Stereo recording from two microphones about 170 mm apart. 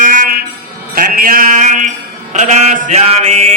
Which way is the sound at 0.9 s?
55° right (ahead or behind).